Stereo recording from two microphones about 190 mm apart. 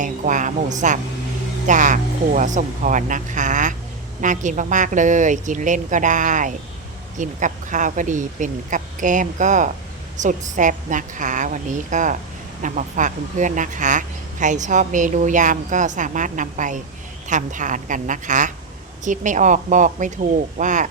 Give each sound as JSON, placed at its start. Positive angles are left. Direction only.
{"t": 0.0, "sound": "speech", "side_deg": -40}